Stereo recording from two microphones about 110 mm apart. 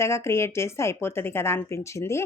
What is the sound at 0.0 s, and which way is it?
A woman's voice, 25° left (ahead or behind).